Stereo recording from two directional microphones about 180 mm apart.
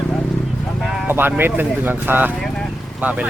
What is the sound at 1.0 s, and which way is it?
Speech, 10° right (ahead or behind).